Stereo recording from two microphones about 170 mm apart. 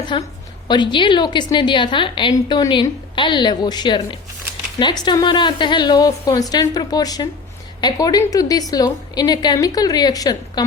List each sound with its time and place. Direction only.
0.1 s a woman's voice: 30° left (ahead or behind)